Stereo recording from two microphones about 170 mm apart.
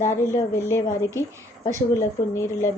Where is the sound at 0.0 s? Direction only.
15° left (ahead or behind).